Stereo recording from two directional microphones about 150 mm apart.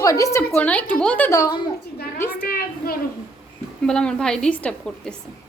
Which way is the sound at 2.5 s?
80° left.